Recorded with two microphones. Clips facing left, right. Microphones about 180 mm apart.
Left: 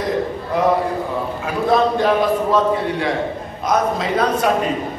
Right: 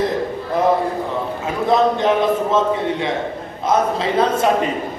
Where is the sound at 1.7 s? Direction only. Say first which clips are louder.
Even; 20° right (ahead or behind).